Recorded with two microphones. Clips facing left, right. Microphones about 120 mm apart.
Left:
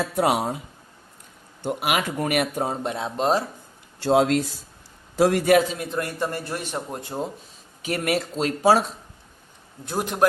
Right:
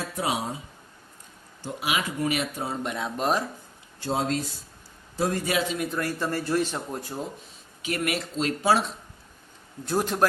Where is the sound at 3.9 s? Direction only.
90° left.